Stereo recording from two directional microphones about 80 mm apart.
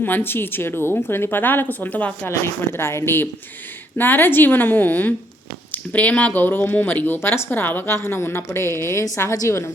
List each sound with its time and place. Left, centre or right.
0.0 s speech: left
2.3 s speech: left